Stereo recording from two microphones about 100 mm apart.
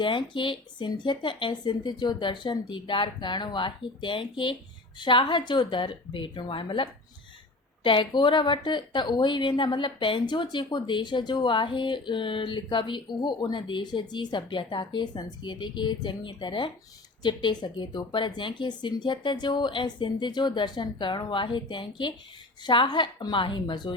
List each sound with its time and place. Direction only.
0.0 s a woman's voice: 55° left (ahead or behind)
7.9 s a woman's voice: 55° left (ahead or behind)